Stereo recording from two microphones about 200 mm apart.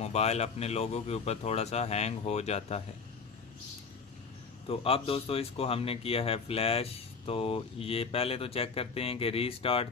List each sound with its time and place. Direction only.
0.0 s speech: 30° left (ahead or behind)
4.6 s speech: 30° left (ahead or behind)